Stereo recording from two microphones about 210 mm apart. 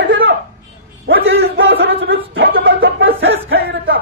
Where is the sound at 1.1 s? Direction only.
55° right (ahead or behind).